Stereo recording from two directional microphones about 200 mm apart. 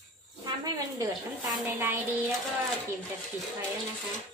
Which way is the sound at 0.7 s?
20° right (ahead or behind).